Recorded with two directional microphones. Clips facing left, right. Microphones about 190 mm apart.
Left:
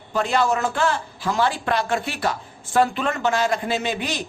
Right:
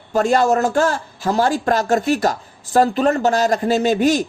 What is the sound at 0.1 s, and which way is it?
A man's voice, 45° right (ahead or behind).